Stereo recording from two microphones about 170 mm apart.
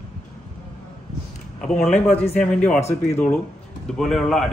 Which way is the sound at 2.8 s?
40° left (ahead or behind).